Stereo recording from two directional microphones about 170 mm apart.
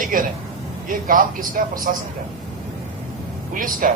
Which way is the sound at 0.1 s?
55° right (ahead or behind).